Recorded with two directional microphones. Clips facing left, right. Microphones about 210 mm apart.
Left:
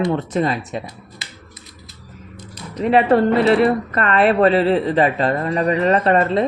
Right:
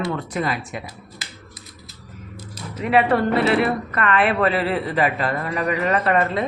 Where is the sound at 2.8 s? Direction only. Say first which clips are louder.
Left 4 dB; 30° left (ahead or behind).